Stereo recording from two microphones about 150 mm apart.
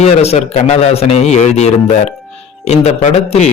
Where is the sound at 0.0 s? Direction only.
45° left (ahead or behind).